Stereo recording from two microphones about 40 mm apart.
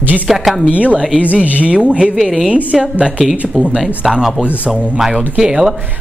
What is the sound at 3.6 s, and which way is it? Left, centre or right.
Speech, centre.